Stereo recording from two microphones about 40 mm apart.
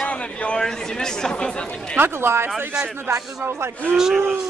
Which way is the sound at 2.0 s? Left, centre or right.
Right.